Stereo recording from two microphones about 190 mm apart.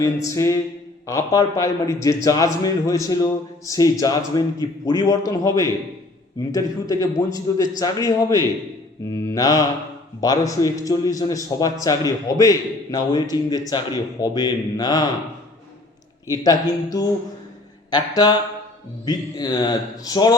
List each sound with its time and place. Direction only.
0.0 s a man's voice: 15° left (ahead or behind)
6.5 s a man's voice: 20° left (ahead or behind)
16.3 s a man's voice: 20° left (ahead or behind)